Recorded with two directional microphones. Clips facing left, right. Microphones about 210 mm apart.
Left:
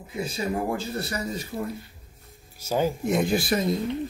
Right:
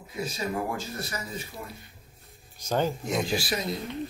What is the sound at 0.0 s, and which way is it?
Speech, 30° left (ahead or behind).